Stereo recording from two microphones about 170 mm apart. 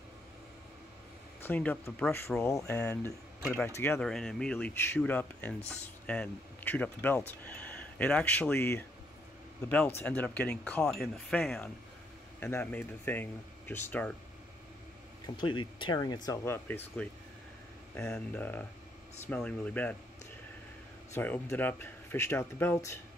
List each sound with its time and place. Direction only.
1.4 s speech: 10° left (ahead or behind)
15.2 s speech: 30° left (ahead or behind); by 17.1 s 10° left (ahead or behind)
18.1 s speech: 10° left (ahead or behind)
21.1 s speech: 15° left (ahead or behind)